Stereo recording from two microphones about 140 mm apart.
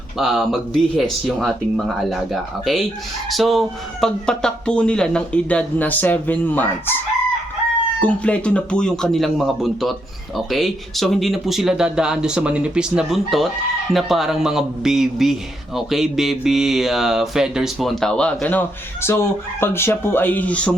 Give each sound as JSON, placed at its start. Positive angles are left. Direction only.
{"t": 0.2, "sound": "a man's voice", "side_deg": 0}
{"t": 8.0, "sound": "a man's voice", "side_deg": 10}